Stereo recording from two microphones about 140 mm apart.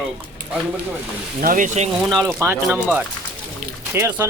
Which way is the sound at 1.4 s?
70° right (ahead or behind).